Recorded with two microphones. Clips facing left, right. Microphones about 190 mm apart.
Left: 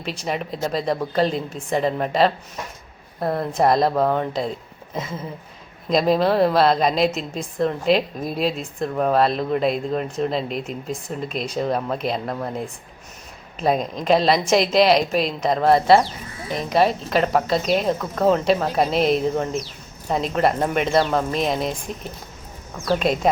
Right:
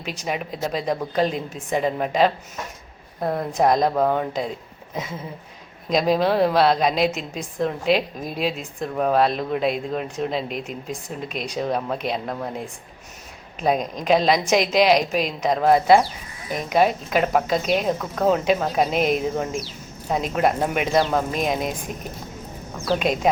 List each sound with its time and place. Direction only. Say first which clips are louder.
0.2 s a woman's voice: left 1 dB; 5° right (ahead or behind)
3.3 s a woman's voice: left 1 dB; centre (ahead or behind)